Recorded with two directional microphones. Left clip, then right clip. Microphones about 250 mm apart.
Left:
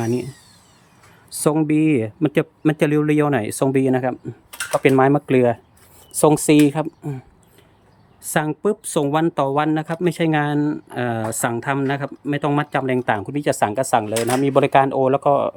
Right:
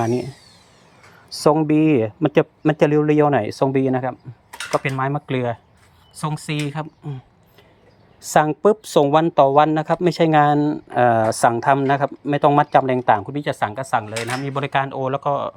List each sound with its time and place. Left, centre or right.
0.0 s speech: centre
1.4 s speech: centre
8.2 s speech: centre